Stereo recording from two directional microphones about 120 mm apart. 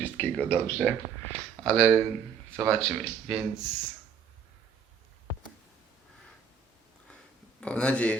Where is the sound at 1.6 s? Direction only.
5° left (ahead or behind).